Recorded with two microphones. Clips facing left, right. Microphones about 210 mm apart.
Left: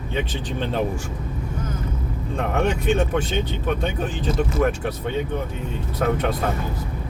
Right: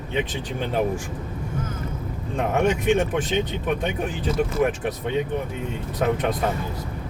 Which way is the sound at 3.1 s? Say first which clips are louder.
Even; 15° right (ahead or behind).